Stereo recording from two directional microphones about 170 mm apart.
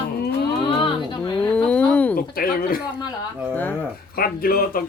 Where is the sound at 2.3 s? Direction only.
60° left (ahead or behind).